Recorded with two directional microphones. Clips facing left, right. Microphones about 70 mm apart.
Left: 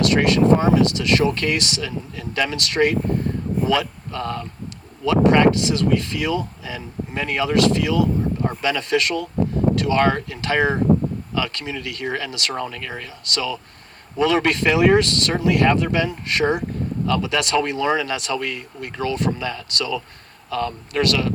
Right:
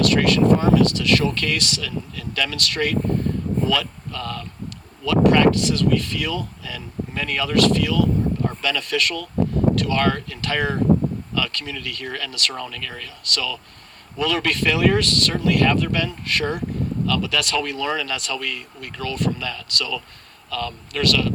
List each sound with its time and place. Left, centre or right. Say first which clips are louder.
0.0 s speech: left 1 dB; left